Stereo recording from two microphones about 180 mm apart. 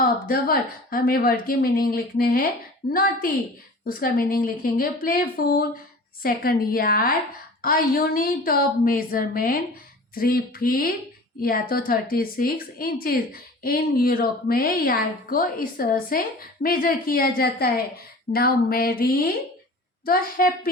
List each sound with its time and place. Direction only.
0.0 s a woman's voice: 50° left (ahead or behind)
20.4 s speech: 55° left (ahead or behind)